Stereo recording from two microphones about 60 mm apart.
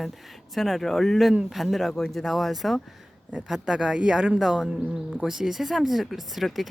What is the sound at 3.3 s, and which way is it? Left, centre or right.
Speech, centre.